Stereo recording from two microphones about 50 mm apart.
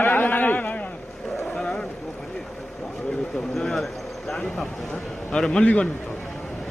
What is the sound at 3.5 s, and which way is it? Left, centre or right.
A man's voice, centre.